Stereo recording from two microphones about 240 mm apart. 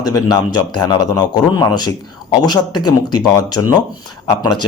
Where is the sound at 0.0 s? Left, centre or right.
Centre.